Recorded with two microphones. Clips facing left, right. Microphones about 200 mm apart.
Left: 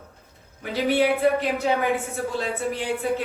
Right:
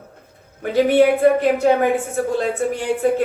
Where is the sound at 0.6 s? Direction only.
50° right (ahead or behind).